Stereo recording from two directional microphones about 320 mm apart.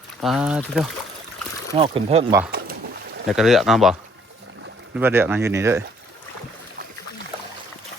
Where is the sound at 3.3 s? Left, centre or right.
Centre.